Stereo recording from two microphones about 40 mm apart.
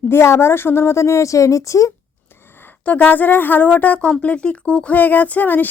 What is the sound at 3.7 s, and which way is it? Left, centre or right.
A woman's voice, left.